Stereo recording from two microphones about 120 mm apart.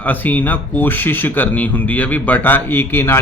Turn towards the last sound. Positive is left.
turn(degrees=20)  # may be behind; listen again after turning